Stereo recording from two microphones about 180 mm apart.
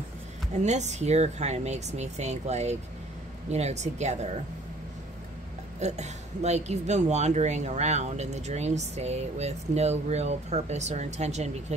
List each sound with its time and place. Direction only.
0.5 s speech: 40° right (ahead or behind)
5.8 s speech: 40° right (ahead or behind)